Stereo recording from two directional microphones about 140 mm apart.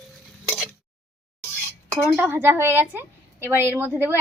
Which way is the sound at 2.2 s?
15° right (ahead or behind).